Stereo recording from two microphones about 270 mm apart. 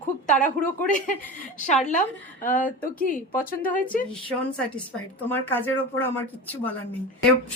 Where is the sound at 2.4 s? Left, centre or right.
Left.